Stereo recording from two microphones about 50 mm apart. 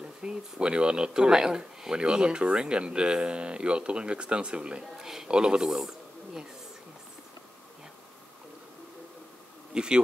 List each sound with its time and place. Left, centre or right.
0.2 s a man's voice: centre
9.8 s speech: centre